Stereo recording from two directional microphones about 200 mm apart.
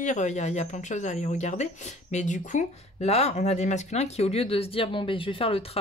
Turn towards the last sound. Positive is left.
turn(degrees=30)  # may be behind; listen again after turning